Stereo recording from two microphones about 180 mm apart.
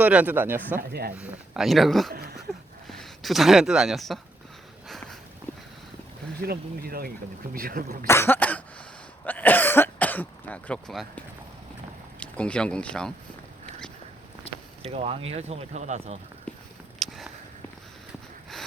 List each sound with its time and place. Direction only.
0.0 s speech: 10° right (ahead or behind)
0.8 s speech: 60° right (ahead or behind)
1.1 s speech: 5° right (ahead or behind)
2.5 s a sound: centre (ahead or behind)
2.8 s speech: centre (ahead or behind)
6.4 s speech: 55° right (ahead or behind)
8.0 s cough: 15° left (ahead or behind)
9.2 s speech: 10° left (ahead or behind)
12.2 s speech: 5° left (ahead or behind)
14.9 s speech: 35° right (ahead or behind)
16.5 s a sound: 5° left (ahead or behind)